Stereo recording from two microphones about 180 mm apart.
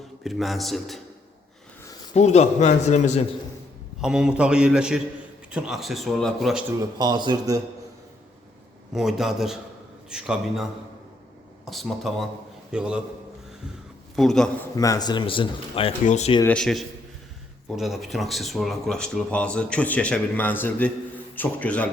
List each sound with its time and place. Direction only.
0.3 s speech: centre (ahead or behind)
2.1 s a man's voice: 40° left (ahead or behind)
4.0 s speech: 5° right (ahead or behind)
6.7 s speech: 20° right (ahead or behind)
8.9 s speech: centre (ahead or behind)
14.2 s speech: 5° left (ahead or behind)
14.8 s a man's voice: 20° left (ahead or behind); by 16.3 s 40° left (ahead or behind)
16.5 s a man's voice: centre (ahead or behind)